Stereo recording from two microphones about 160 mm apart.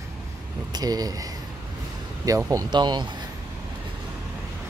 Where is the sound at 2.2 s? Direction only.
20° right (ahead or behind).